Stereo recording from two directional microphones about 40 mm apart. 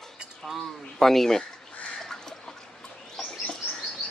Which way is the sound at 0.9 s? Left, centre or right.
Centre.